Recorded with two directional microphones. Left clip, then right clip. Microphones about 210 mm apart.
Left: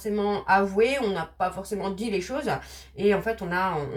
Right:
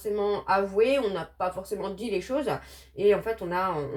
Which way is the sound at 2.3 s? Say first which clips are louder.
Even; 25° right (ahead or behind).